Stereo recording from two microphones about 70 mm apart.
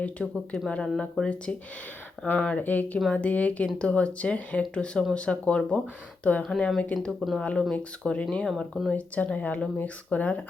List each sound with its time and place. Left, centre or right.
0.0 s speech: centre
7.2 s speech: centre
7.7 s speech: centre
8.9 s speech: centre